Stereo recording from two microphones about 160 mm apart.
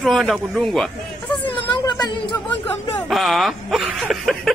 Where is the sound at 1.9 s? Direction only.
25° left (ahead or behind).